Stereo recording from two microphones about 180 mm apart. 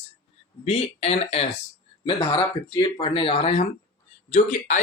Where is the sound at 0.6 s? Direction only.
35° left (ahead or behind).